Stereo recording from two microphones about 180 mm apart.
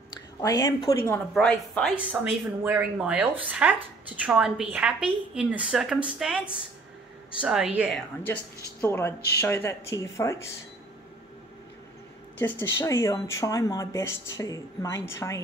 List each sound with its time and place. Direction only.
0.4 s a woman's voice: 20° left (ahead or behind)
1.3 s a woman's voice: 5° left (ahead or behind)
2.0 s a woman's voice: 10° right (ahead or behind)
8.8 s speech: 10° left (ahead or behind)
12.4 s speech: 10° left (ahead or behind)